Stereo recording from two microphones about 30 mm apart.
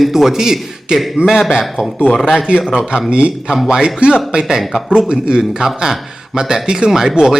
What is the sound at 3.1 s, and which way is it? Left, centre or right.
Speech, right.